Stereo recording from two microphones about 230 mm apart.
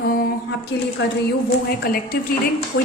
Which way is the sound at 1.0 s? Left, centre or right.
Left.